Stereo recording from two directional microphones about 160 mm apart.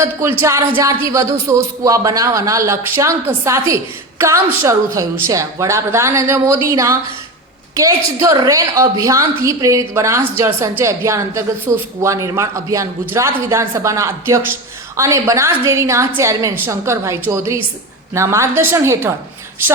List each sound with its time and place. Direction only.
0.0 s a woman's voice: 15° right (ahead or behind)